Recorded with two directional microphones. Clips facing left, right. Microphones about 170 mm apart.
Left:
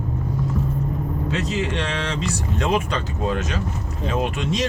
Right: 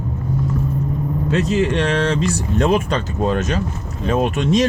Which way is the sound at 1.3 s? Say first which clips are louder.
Right 8 dB; 50° right (ahead or behind).